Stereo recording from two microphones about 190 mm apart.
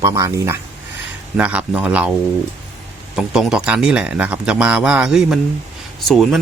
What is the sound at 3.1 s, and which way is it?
Speech, 5° right (ahead or behind).